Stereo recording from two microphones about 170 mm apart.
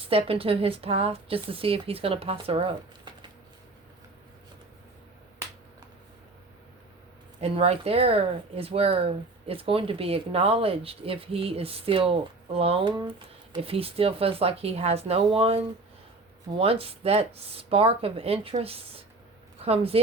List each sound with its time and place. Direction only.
0.1 s speech: 35° right (ahead or behind)
7.4 s speech: 35° right (ahead or behind)